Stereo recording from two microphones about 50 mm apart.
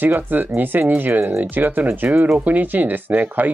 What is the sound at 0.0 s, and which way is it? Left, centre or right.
Speech, right.